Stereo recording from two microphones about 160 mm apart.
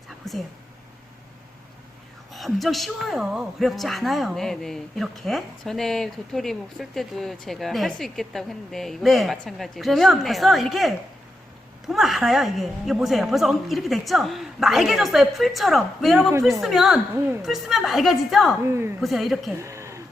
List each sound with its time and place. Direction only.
0.2 s a woman's voice: centre (ahead or behind)
2.3 s a woman's voice: centre (ahead or behind)
18.7 s a woman's voice: 15° right (ahead or behind)
18.9 s a woman's voice: centre (ahead or behind)
19.5 s a sound: 20° right (ahead or behind)